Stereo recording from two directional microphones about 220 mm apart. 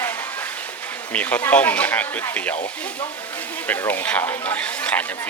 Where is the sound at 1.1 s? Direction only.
5° left (ahead or behind).